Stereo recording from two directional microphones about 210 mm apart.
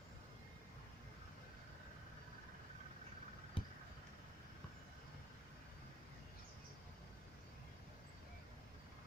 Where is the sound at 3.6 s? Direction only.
25° left (ahead or behind).